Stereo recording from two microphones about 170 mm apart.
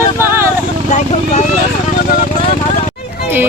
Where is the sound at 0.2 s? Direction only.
15° right (ahead or behind).